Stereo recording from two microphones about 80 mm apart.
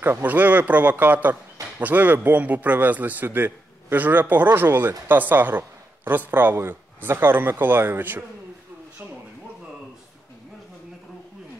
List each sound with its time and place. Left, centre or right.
0.0 s a man's voice: right